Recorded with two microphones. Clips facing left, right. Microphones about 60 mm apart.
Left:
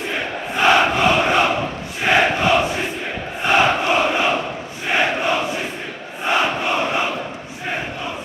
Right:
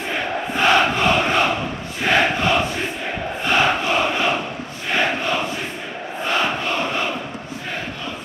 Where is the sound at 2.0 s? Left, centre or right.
Centre.